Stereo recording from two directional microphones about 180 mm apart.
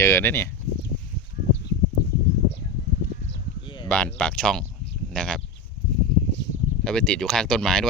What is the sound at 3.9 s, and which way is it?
Speech, 5° left (ahead or behind).